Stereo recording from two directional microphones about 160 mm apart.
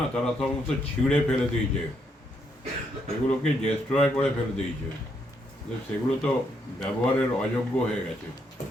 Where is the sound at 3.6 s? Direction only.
5° left (ahead or behind).